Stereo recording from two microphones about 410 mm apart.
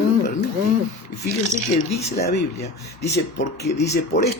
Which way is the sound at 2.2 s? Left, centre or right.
Left.